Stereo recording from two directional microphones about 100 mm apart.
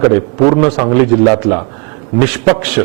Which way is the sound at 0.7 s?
20° right (ahead or behind).